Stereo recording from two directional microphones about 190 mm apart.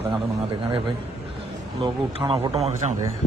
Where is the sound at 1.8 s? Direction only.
25° right (ahead or behind).